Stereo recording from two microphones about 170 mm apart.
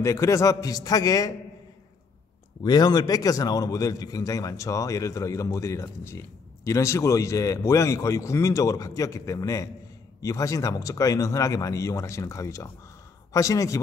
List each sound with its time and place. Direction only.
0.0 s a man's voice: 20° left (ahead or behind)
2.6 s a man's voice: 25° left (ahead or behind)